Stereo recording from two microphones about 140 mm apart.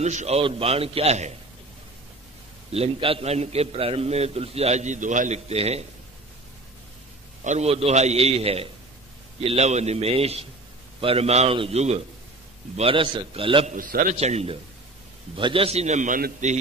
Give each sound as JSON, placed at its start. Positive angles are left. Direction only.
{"t": 0.0, "sound": "a man's voice", "side_deg": -55}
{"t": 0.4, "sound": "a man's voice", "side_deg": -40}
{"t": 2.7, "sound": "a man's voice", "side_deg": -45}
{"t": 7.4, "sound": "a man's voice", "side_deg": -50}
{"t": 13.7, "sound": "a man's voice", "side_deg": -80}
{"t": 14.1, "sound": "a man's voice", "side_deg": -50}